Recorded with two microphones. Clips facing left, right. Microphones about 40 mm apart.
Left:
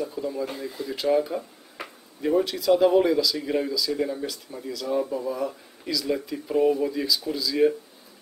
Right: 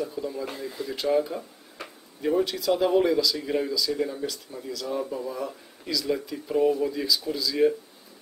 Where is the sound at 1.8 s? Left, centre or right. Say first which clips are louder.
Left 2 dB; centre.